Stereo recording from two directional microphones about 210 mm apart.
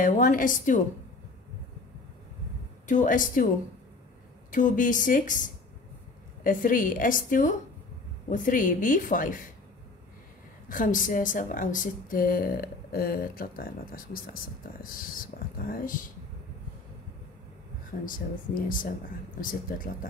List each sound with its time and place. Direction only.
0.0 s a woman's voice: 40° left (ahead or behind)
2.9 s a woman's voice: 35° left (ahead or behind)
4.5 s a woman's voice: 40° left (ahead or behind)
6.4 s a woman's voice: 40° left (ahead or behind)
10.7 s speech: 40° left (ahead or behind)
18.0 s a woman's voice: 40° left (ahead or behind)